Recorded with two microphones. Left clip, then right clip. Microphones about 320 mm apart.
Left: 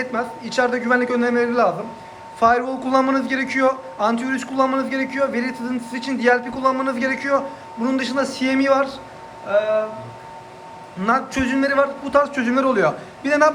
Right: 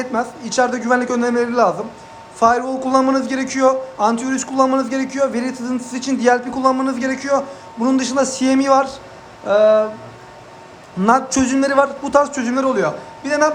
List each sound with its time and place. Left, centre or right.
0.0 s a man's voice: centre
11.0 s a man's voice: centre